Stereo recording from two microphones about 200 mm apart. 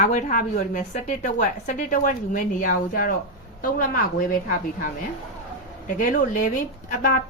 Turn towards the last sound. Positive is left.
turn(degrees=45)  # may be behind; listen again after turning